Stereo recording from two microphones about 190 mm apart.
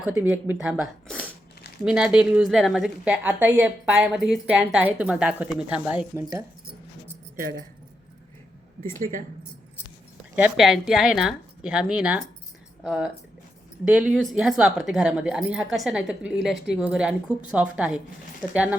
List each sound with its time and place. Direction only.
0.0 s speech: 5° right (ahead or behind)
1.8 s a woman's voice: 5° right (ahead or behind)
8.8 s speech: 45° right (ahead or behind)
10.3 s a woman's voice: 5° right (ahead or behind)